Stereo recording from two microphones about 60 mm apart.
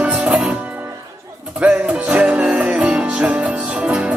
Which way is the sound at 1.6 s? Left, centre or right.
Right.